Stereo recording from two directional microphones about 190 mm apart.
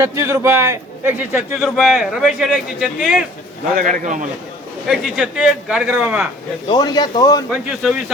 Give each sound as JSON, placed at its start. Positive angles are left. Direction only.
{"t": 0.0, "sound": "a man's voice", "side_deg": -15}
{"t": 3.8, "sound": "a man's voice", "side_deg": -45}
{"t": 4.9, "sound": "a man's voice", "side_deg": 0}
{"t": 6.7, "sound": "speech", "side_deg": 20}
{"t": 7.5, "sound": "a man's voice", "side_deg": 0}